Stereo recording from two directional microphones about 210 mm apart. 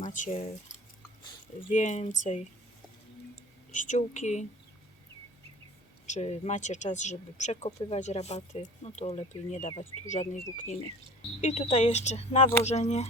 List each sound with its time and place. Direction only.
0.0 s speech: 35° left (ahead or behind)
1.7 s speech: 35° left (ahead or behind)
3.7 s speech: 35° left (ahead or behind)
6.1 s speech: 30° left (ahead or behind)